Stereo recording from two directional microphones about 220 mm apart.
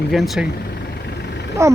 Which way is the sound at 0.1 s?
Centre (ahead or behind).